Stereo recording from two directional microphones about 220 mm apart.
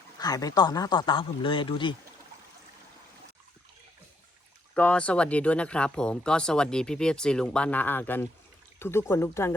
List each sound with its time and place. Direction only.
0.2 s speech: 15° left (ahead or behind)
4.7 s speech: 5° left (ahead or behind)